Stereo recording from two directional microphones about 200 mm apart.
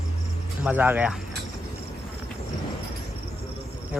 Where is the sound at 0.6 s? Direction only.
10° right (ahead or behind).